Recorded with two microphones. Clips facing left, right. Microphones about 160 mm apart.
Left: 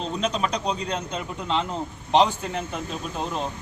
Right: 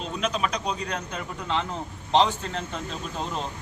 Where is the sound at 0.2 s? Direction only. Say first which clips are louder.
Even; 30° left (ahead or behind); by 2.6 s 15° left (ahead or behind).